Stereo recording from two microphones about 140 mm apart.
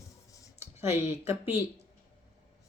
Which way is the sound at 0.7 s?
20° right (ahead or behind).